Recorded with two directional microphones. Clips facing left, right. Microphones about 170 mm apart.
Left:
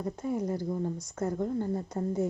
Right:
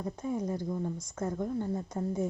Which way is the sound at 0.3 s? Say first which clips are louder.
Left 2 dB; 10° left (ahead or behind).